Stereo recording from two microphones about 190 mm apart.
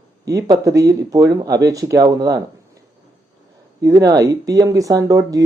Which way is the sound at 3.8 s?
15° right (ahead or behind).